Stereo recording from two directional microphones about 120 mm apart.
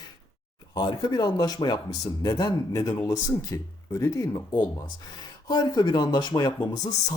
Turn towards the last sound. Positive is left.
turn(degrees=30)  # may be behind; listen again after turning